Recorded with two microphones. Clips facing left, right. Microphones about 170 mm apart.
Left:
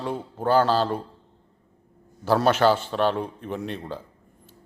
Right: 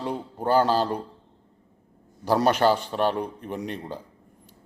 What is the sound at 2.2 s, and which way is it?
A man's voice, 15° right (ahead or behind).